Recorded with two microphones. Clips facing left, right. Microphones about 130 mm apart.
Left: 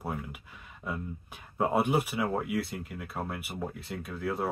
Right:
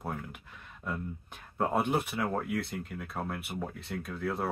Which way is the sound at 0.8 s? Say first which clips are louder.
Even; 5° left (ahead or behind).